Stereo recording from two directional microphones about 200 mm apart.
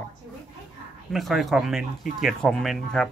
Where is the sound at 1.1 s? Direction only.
Centre (ahead or behind).